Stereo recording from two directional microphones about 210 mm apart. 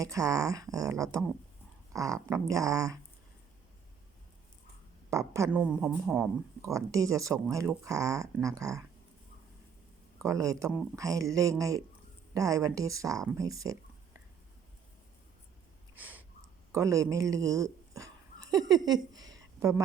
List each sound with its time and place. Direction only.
0.0 s speech: 15° right (ahead or behind)
5.1 s a woman's voice: 15° right (ahead or behind)
6.6 s speech: 15° right (ahead or behind)
10.2 s speech: 15° right (ahead or behind)
16.0 s a sound: 10° right (ahead or behind)
16.7 s speech: 15° right (ahead or behind)
19.3 s a sound: 15° right (ahead or behind)